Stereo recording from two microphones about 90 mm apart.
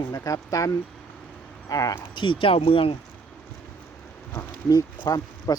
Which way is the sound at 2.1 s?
70° left (ahead or behind).